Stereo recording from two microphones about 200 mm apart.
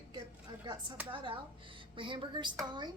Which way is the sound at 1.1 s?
25° right (ahead or behind).